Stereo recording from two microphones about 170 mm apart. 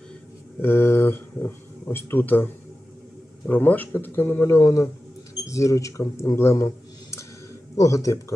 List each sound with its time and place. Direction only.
0.6 s speech: 15° left (ahead or behind)